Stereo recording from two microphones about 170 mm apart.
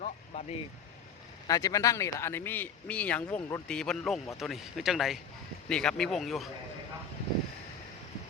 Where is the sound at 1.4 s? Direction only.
20° left (ahead or behind); by 6.5 s centre (ahead or behind).